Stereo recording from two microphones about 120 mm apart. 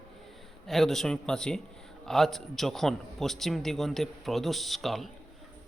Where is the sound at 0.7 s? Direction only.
Centre (ahead or behind).